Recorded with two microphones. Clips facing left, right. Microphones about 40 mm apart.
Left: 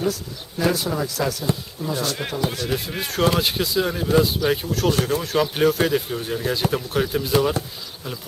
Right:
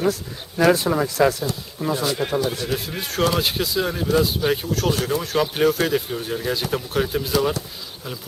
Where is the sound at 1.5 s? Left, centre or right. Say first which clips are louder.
Left 5 dB; left.